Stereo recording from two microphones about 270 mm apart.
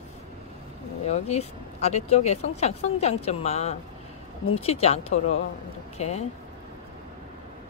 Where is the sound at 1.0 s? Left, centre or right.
Left.